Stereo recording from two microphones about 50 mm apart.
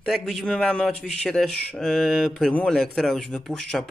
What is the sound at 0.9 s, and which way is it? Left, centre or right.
Speech, centre.